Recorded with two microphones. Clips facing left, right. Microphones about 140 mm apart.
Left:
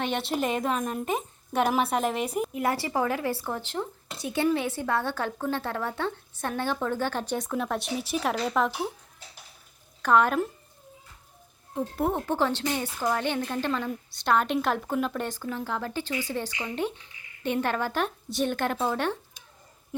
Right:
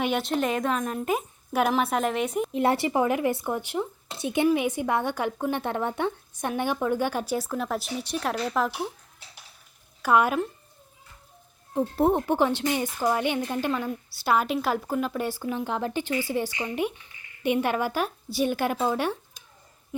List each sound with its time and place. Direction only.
0.0 s a woman's voice: centre (ahead or behind)
2.5 s a woman's voice: 25° right (ahead or behind); by 8.9 s centre (ahead or behind)
10.0 s a woman's voice: 10° right (ahead or behind)
11.7 s speech: 30° right (ahead or behind)
12.1 s a woman's voice: 15° right (ahead or behind)